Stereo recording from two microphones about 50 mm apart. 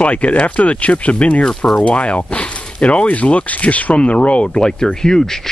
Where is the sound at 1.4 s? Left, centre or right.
Centre.